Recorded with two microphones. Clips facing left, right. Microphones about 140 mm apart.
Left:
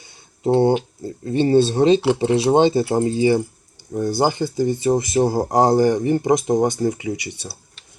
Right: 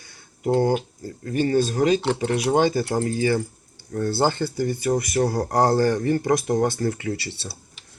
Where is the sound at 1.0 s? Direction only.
25° left (ahead or behind).